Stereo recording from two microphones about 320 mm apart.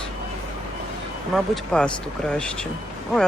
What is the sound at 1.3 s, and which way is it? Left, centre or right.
Speech, centre.